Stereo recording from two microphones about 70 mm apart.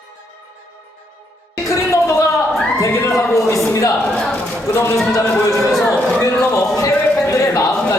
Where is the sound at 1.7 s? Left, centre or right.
Left.